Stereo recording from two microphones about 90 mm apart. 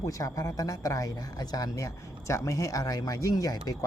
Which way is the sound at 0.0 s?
35° left (ahead or behind).